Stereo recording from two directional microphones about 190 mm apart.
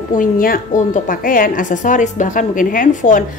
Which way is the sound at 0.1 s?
45° left (ahead or behind).